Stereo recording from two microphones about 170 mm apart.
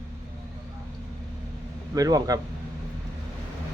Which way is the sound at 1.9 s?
20° right (ahead or behind).